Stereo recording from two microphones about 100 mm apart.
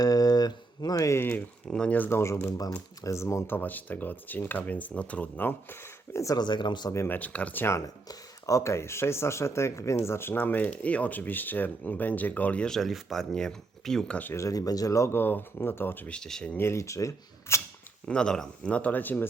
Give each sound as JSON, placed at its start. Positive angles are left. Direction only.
{"t": 0.0, "sound": "speech", "side_deg": 40}
{"t": 6.1, "sound": "speech", "side_deg": 35}
{"t": 6.4, "sound": "speech", "side_deg": 50}
{"t": 6.9, "sound": "speech", "side_deg": 25}
{"t": 7.2, "sound": "speech", "side_deg": 15}
{"t": 8.0, "sound": "speech", "side_deg": 35}
{"t": 14.3, "sound": "speech", "side_deg": 35}
{"t": 16.6, "sound": "speech", "side_deg": 25}
{"t": 18.1, "sound": "speech", "side_deg": 5}